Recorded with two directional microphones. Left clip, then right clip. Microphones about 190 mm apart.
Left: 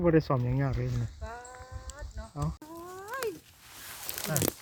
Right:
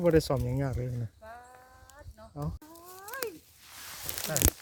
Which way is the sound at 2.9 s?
55° left (ahead or behind).